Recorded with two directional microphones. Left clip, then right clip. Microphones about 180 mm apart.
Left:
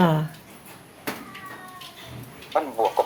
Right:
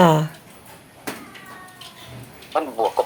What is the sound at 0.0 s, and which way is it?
Speech, 45° right (ahead or behind).